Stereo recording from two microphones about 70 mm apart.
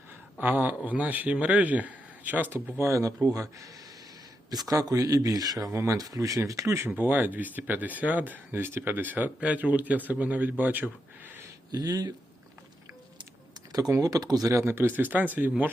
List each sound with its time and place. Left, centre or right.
0.3 s speech: right
5.6 s speech: right
6.0 s speech: right
6.9 s speech: right
11.7 s speech: right
14.0 s speech: right
14.5 s speech: right